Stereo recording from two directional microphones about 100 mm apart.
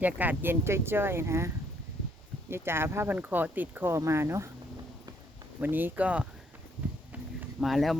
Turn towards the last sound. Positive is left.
turn(degrees=0)  # may be behind; listen again after turning